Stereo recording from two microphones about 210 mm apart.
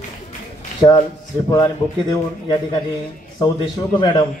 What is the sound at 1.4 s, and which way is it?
A man's voice, 15° left (ahead or behind).